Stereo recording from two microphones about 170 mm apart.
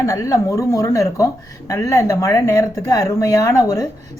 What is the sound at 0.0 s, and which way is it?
A woman's voice, 20° left (ahead or behind).